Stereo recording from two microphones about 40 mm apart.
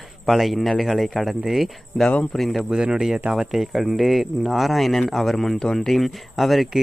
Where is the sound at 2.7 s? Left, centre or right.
Centre.